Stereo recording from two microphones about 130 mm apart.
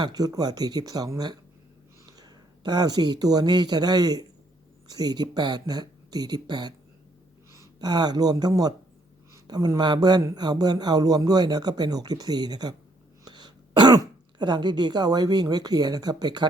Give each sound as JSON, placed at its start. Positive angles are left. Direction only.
{"t": 0.0, "sound": "speech", "side_deg": -30}
{"t": 13.2, "sound": "throat clearing", "side_deg": -35}
{"t": 14.3, "sound": "speech", "side_deg": -35}